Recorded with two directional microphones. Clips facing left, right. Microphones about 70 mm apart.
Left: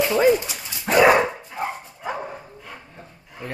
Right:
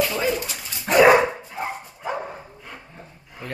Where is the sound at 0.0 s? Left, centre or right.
Left.